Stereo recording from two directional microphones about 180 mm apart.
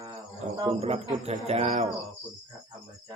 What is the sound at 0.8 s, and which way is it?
Cricket, 35° right (ahead or behind).